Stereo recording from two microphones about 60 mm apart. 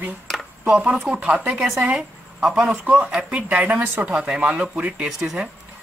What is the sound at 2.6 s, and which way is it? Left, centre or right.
Speech, centre.